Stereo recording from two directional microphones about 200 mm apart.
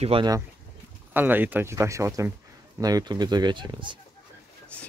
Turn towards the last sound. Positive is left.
turn(degrees=-25)  # may be behind; listen again after turning